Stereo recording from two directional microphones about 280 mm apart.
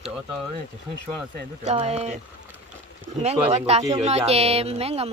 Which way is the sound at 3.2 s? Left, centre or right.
Right.